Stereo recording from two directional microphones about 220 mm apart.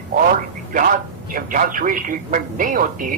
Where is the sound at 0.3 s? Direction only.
40° right (ahead or behind).